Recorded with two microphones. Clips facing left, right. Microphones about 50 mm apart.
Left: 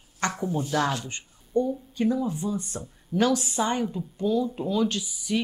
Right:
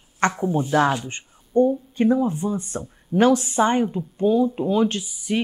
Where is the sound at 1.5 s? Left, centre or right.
Right.